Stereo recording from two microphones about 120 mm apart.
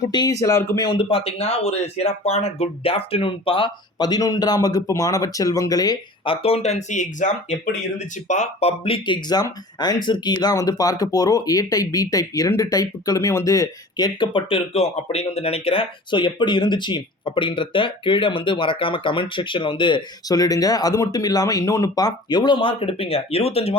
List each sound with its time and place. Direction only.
0.1 s speech: 35° left (ahead or behind)
0.9 s speech: 45° left (ahead or behind)
6.2 s speech: 50° left (ahead or behind); by 8.7 s 75° left (ahead or behind)
8.8 s speech: 45° left (ahead or behind)